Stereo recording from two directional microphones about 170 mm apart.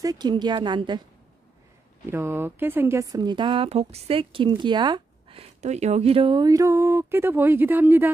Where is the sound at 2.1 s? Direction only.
15° right (ahead or behind).